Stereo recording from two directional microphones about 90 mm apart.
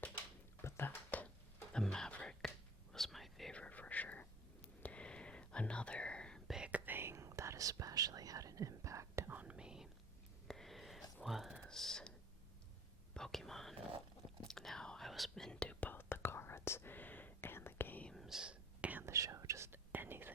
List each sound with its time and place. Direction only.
0.6 s a sound: 25° left (ahead or behind)
1.7 s whispering: 5° left (ahead or behind)
3.5 s whispering: 15° left (ahead or behind)
6.5 s whispering: 10° right (ahead or behind); by 9.3 s 30° right (ahead or behind)
9.3 s whispering: 15° right (ahead or behind)
10.5 s a sound: 5° left (ahead or behind)
13.1 s whispering: 5° left (ahead or behind)
15.9 s whispering: 25° left (ahead or behind)
18.1 s whispering: centre (ahead or behind)
19.0 s whispering: 35° right (ahead or behind)